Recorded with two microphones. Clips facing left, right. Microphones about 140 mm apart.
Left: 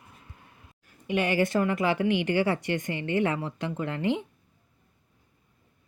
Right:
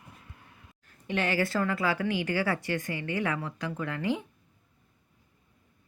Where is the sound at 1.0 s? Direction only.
15° left (ahead or behind).